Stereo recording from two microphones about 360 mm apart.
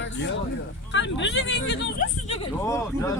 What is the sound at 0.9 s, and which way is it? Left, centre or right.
Speech, left.